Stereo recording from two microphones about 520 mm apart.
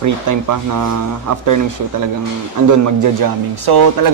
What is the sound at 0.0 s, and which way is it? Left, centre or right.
Speech, right.